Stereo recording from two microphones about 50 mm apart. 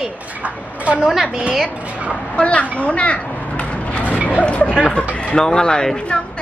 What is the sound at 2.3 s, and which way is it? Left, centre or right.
Speech, left.